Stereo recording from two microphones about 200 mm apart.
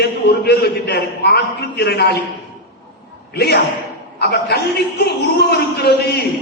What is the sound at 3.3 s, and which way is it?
Speech, 55° left (ahead or behind).